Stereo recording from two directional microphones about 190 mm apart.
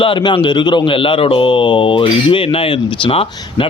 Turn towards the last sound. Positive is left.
turn(degrees=30)  # may be behind; listen again after turning